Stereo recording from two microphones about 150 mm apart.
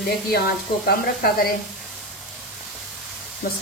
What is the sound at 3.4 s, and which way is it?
Speech, 80° left.